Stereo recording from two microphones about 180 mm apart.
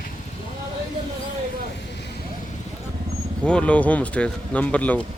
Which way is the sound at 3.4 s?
5° left (ahead or behind).